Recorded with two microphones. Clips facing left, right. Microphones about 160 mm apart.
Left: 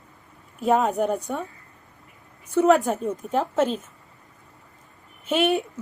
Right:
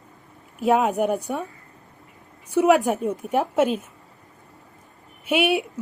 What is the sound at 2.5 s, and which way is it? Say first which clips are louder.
Speech: right 1 dB; 10° right (ahead or behind).